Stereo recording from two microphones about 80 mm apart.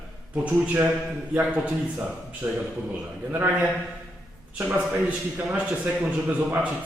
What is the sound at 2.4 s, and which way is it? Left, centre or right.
Speech, right.